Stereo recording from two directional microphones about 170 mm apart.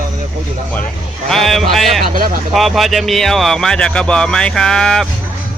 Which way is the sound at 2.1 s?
55° right (ahead or behind).